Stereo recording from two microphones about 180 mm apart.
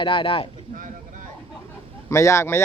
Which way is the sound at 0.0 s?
30° left (ahead or behind).